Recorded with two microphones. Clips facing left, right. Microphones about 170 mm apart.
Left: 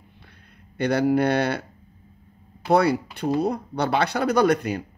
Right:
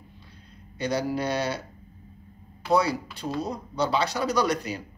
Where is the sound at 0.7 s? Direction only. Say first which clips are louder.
Left 7 dB; 60° left (ahead or behind).